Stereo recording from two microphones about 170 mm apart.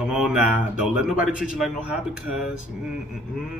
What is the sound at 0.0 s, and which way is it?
A man's voice, 5° right (ahead or behind).